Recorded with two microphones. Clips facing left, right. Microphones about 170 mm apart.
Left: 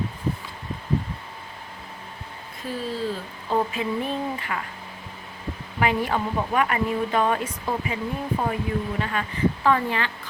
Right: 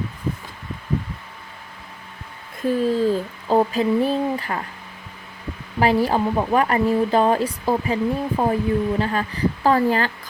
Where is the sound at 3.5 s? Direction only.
35° right (ahead or behind).